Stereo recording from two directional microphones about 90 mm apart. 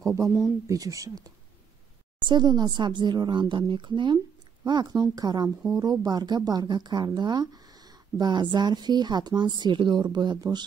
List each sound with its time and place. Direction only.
0.7 s speech: 40° right (ahead or behind)
2.1 s speech: 55° right (ahead or behind)